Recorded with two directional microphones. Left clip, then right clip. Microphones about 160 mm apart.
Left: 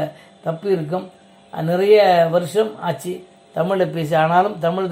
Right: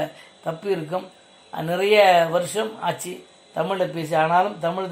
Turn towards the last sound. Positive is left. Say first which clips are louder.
# left 4 dB
turn(degrees=15)  # may be behind; listen again after turning